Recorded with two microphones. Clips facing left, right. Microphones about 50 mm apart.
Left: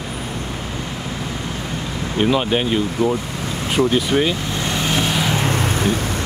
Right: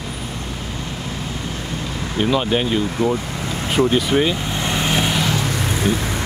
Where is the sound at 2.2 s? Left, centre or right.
Centre.